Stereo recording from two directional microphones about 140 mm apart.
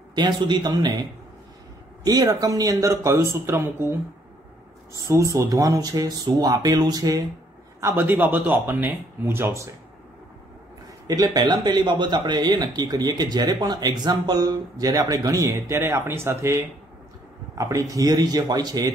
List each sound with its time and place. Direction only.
0.1 s speech: 30° right (ahead or behind)
2.0 s speech: 25° right (ahead or behind)
5.0 s speech: 20° right (ahead or behind)
7.8 s a man's voice: 15° right (ahead or behind)
11.1 s speech: 30° right (ahead or behind)